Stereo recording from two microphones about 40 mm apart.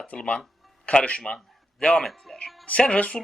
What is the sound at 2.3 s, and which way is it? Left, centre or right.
Music, centre.